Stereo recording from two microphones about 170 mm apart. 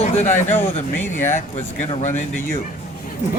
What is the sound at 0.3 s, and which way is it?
Speech, 10° left (ahead or behind).